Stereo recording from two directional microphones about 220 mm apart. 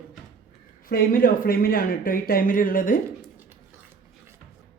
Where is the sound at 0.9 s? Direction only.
40° left (ahead or behind).